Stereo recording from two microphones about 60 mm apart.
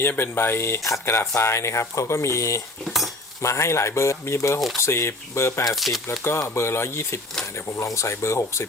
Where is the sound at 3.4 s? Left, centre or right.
Left.